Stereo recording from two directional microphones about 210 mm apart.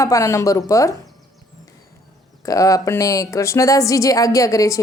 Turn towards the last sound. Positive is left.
turn(degrees=15)  # may be behind; listen again after turning